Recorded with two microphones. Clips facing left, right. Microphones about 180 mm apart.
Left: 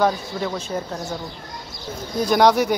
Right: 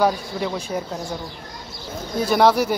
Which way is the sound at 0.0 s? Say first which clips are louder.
Even; 10° right (ahead or behind).